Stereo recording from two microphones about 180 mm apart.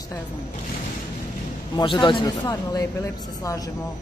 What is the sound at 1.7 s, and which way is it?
A man's voice, 25° left (ahead or behind).